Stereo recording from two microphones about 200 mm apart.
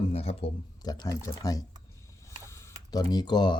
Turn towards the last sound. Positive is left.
turn(degrees=20)  # may be behind; listen again after turning